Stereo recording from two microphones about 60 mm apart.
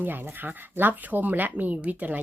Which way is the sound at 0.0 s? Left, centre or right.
Right.